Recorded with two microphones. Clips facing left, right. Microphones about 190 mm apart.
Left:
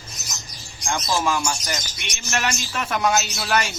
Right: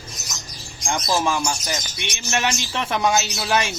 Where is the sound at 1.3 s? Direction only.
15° right (ahead or behind).